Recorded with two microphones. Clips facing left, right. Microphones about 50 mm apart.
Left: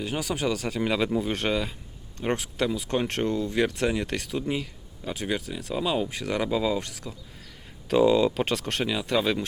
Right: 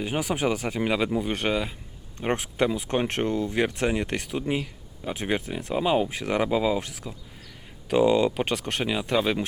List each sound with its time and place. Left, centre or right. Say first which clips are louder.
0.0 s speech: right 2 dB; centre
2.1 s speech: right 2 dB; right